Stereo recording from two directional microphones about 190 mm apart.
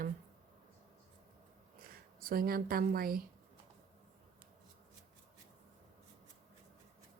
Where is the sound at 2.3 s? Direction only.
50° right (ahead or behind).